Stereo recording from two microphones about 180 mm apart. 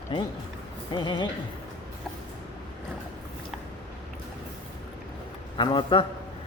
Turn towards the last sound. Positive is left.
turn(degrees=25)  # may be behind; listen again after turning